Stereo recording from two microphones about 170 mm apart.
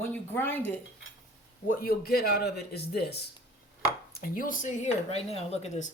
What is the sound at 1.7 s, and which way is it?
Speech, 60° left (ahead or behind).